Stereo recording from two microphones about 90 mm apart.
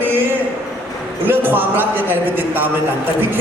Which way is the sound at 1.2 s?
20° right (ahead or behind).